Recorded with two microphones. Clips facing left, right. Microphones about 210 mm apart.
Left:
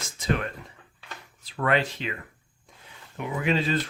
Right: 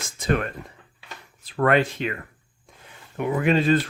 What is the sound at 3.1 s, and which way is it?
Speech, 50° right (ahead or behind).